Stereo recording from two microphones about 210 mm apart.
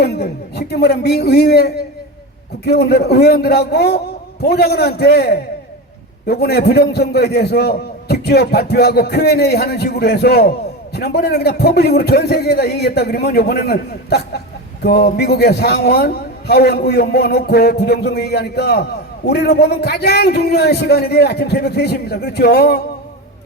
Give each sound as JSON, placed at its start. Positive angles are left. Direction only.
{"t": 0.0, "sound": "a man's voice", "side_deg": 50}